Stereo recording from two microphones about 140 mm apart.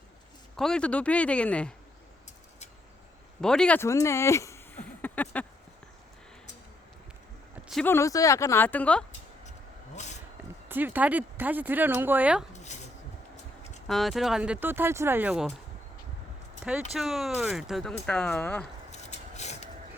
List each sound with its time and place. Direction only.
0.5 s speech: 5° left (ahead or behind)
3.4 s speech: 5° left (ahead or behind)
3.8 s speech: 20° left (ahead or behind)
7.9 s speech: 20° left (ahead or behind)
9.5 s vehicle: 55° left (ahead or behind)
10.7 s speech: 15° right (ahead or behind)
12.5 s a sound: 55° left (ahead or behind)
13.8 s speech: centre (ahead or behind)
16.9 s speech: centre (ahead or behind)
18.9 s a sound: 55° left (ahead or behind)